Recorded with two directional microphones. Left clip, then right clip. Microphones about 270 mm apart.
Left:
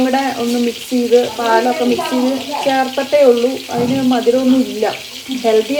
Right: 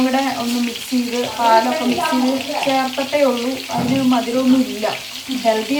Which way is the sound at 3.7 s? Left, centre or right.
Centre.